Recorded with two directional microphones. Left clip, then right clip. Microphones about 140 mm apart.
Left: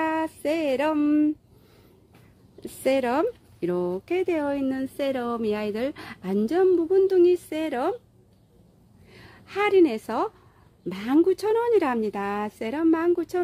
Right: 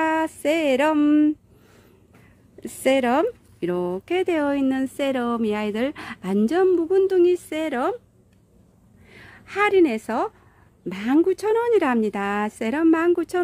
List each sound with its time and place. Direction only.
0.0 s a sound: 35° right (ahead or behind)
2.6 s speech: 30° right (ahead or behind)
9.1 s a woman's voice: 20° right (ahead or behind); by 13.4 s 40° right (ahead or behind)